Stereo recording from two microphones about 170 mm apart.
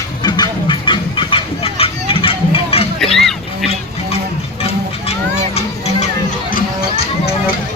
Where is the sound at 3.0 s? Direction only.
5° left (ahead or behind).